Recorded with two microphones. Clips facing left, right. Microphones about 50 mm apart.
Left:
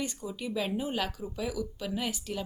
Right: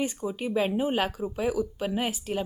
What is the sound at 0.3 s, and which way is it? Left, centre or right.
Speech, right.